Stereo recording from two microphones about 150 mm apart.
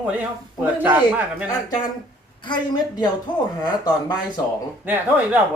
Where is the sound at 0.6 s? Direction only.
15° right (ahead or behind).